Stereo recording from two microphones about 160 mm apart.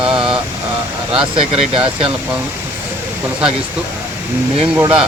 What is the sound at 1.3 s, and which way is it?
Speech, 35° right (ahead or behind).